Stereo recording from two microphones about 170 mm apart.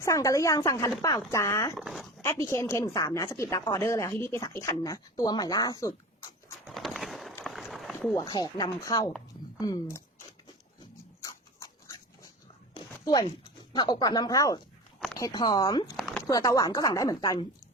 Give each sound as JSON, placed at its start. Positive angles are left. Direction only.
{"t": 0.0, "sound": "speech", "side_deg": 20}
{"t": 1.7, "sound": "speech", "side_deg": -5}
{"t": 2.2, "sound": "a woman's voice", "side_deg": 15}
{"t": 6.7, "sound": "a sound", "side_deg": 0}
{"t": 7.4, "sound": "run", "side_deg": 0}
{"t": 8.1, "sound": "speech", "side_deg": 20}
{"t": 11.2, "sound": "dog", "side_deg": 20}
{"t": 12.7, "sound": "a sound", "side_deg": 25}
{"t": 13.2, "sound": "speech", "side_deg": 25}
{"t": 16.0, "sound": "a sound", "side_deg": 0}
{"t": 16.2, "sound": "speech", "side_deg": 20}